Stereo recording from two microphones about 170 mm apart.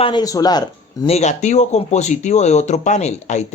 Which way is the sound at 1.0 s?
40° left (ahead or behind).